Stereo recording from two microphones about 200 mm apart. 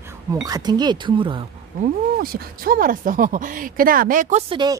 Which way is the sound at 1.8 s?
45° right (ahead or behind).